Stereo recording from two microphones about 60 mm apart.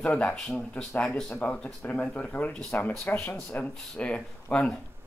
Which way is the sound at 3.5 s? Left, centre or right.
Left.